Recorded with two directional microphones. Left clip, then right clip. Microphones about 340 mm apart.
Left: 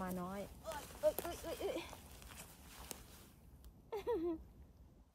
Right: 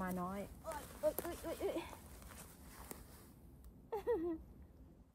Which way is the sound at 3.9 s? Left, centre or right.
Centre.